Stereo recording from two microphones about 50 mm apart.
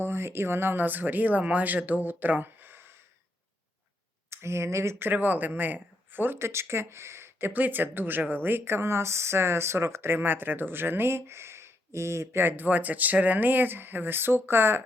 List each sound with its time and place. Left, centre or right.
0.0 s speech: right
4.3 s speech: right
4.9 s speech: right
6.4 s speech: right
7.4 s speech: right
12.4 s speech: right